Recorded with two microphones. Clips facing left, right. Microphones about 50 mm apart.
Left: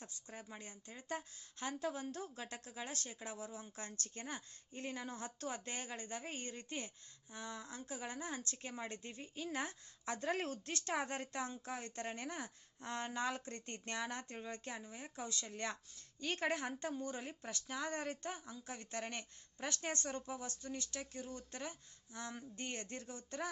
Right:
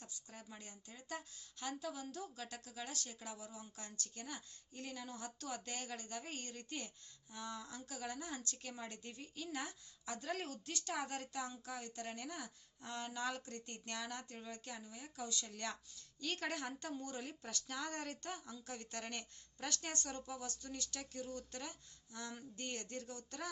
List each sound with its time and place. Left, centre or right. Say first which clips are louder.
0.1 s a woman's voice: left 3 dB; left